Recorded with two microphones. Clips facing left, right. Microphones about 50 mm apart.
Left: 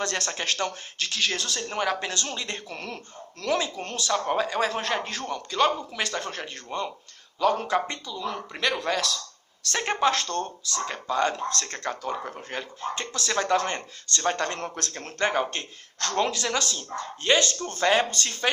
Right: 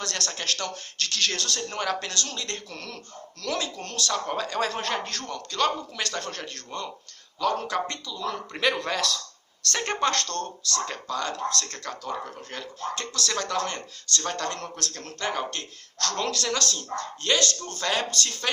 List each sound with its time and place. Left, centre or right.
0.0 s speech: left
0.9 s speech: centre
5.1 s speech: centre
8.5 s speech: centre
11.1 s speech: left